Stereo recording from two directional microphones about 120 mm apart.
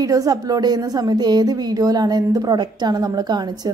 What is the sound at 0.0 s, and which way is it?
A woman's voice, 30° right (ahead or behind).